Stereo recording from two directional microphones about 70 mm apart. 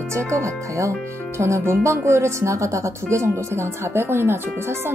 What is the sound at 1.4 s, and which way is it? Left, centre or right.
Speech, right.